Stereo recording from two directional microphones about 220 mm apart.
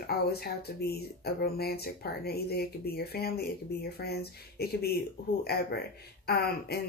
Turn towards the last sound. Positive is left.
turn(degrees=45)  # may be behind; listen again after turning